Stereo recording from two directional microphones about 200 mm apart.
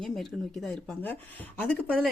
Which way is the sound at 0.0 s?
Centre (ahead or behind).